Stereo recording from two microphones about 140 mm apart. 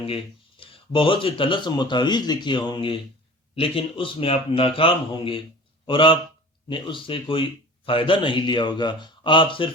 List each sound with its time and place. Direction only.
0.0 s speech: 40° left (ahead or behind)